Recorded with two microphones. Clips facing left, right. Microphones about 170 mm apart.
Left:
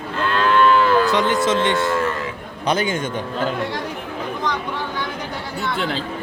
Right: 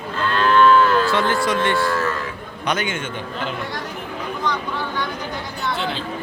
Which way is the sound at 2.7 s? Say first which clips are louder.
Left 4 dB; 35° left (ahead or behind).